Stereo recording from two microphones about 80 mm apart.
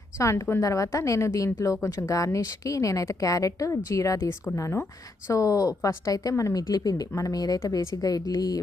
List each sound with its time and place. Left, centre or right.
0.2 s a woman's voice: left